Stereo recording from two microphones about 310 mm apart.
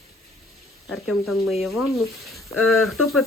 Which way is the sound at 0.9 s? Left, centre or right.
Centre.